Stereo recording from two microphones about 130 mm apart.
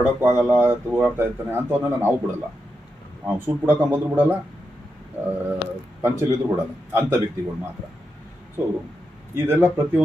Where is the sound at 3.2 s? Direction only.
15° right (ahead or behind).